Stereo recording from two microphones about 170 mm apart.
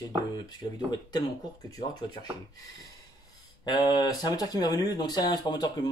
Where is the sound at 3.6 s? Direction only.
25° left (ahead or behind).